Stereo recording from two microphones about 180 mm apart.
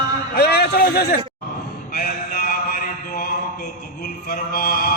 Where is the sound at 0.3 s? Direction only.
60° left (ahead or behind).